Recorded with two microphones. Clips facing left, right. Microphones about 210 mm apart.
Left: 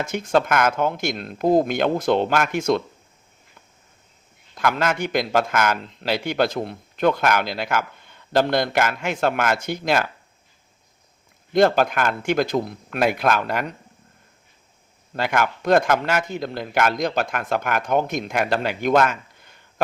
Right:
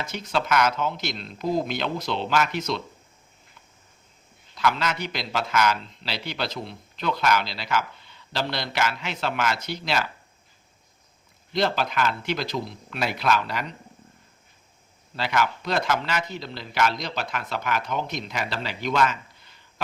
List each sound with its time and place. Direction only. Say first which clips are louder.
0.0 s a man's voice: left 7 dB; 50° left (ahead or behind)
4.5 s a man's voice: left 3 dB; 50° left (ahead or behind)
11.5 s a man's voice: left 7 dB; 50° left (ahead or behind)
15.1 s a man's voice: left 3 dB; 50° left (ahead or behind)